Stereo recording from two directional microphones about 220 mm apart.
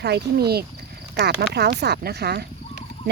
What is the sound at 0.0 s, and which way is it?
Speech, 45° right (ahead or behind).